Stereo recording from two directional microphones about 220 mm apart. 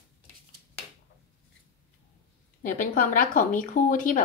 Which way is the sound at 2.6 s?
40° left (ahead or behind).